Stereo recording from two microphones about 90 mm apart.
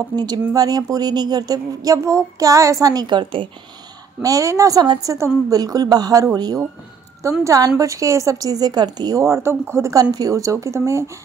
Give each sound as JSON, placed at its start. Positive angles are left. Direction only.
{"t": 0.1, "sound": "speech", "side_deg": -50}
{"t": 4.2, "sound": "speech", "side_deg": -40}
{"t": 9.2, "sound": "speech", "side_deg": -30}